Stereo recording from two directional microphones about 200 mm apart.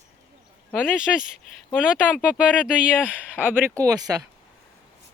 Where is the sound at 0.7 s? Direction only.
10° left (ahead or behind).